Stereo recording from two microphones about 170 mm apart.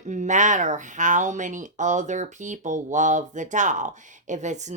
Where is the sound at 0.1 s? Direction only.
45° right (ahead or behind).